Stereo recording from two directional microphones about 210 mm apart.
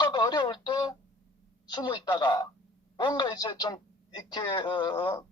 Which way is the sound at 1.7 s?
20° left (ahead or behind).